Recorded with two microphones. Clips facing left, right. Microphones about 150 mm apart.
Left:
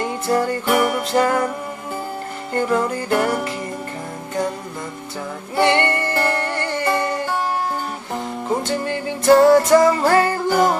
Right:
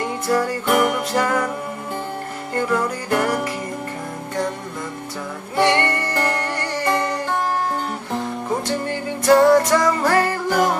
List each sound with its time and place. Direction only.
0.0 s music: 30° left (ahead or behind)
0.7 s music: centre (ahead or behind)
1.0 s music: 30° left (ahead or behind)
2.6 s music: 30° left (ahead or behind)
5.5 s music: 30° left (ahead or behind)
8.6 s music: 30° left (ahead or behind)